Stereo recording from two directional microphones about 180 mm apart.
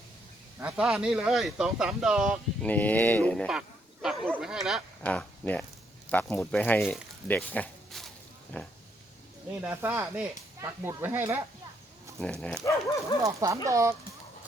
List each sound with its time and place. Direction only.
0.6 s speech: 5° right (ahead or behind)
2.6 s speech: 10° left (ahead or behind)
5.0 s speech: 10° left (ahead or behind)
7.3 s a sound: 10° left (ahead or behind)
8.6 s speech: 5° left (ahead or behind)
9.6 s speech: 10° right (ahead or behind)
12.2 s speech: 5° left (ahead or behind)
13.2 s speech: 15° right (ahead or behind)